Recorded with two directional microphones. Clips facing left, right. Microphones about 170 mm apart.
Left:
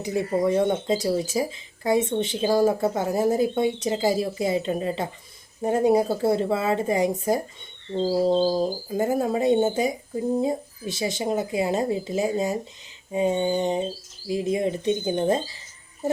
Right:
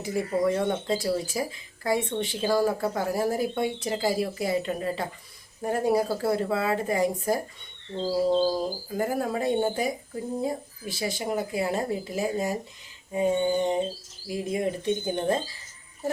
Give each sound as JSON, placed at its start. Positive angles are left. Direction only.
{"t": 0.0, "sound": "speech", "side_deg": 20}